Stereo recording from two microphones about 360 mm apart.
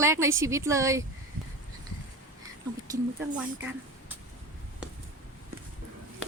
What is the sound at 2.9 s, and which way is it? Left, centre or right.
Speech, centre.